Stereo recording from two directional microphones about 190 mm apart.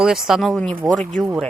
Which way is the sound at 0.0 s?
Centre (ahead or behind).